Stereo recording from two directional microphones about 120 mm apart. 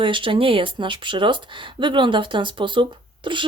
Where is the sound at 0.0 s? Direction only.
45° right (ahead or behind).